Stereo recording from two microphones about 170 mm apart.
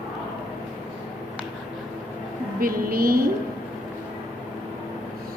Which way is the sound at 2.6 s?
60° right (ahead or behind).